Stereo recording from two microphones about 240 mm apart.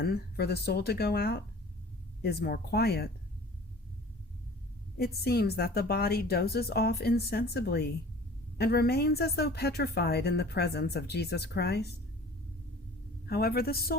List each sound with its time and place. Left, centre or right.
0.0 s a woman's voice: left
4.9 s a woman's voice: left
13.2 s a woman's voice: left